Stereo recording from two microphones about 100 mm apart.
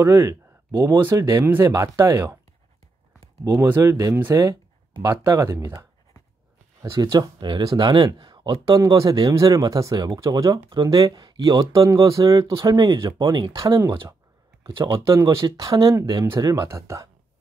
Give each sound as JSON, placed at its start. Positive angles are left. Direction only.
{"t": 0.0, "sound": "speech", "side_deg": -30}
{"t": 3.6, "sound": "speech", "side_deg": -25}
{"t": 6.8, "sound": "speech", "side_deg": -35}
{"t": 7.1, "sound": "speech", "side_deg": -50}
{"t": 8.7, "sound": "speech", "side_deg": -35}
{"t": 14.9, "sound": "speech", "side_deg": -30}